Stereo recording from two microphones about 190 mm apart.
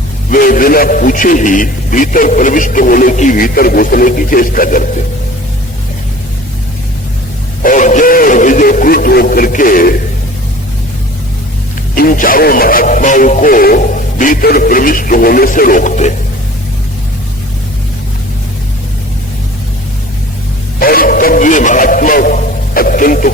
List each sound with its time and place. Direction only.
0.3 s a man's voice: 45° left (ahead or behind)
7.6 s speech: 45° left (ahead or behind)
11.9 s a man's voice: 50° left (ahead or behind)
20.7 s a man's voice: 50° left (ahead or behind)